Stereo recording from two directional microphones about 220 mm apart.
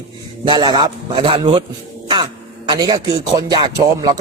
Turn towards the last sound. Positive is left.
turn(degrees=-15)  # may be behind; listen again after turning